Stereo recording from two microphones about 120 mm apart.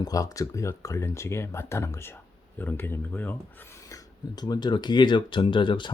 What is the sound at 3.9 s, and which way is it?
Speech, 35° left (ahead or behind).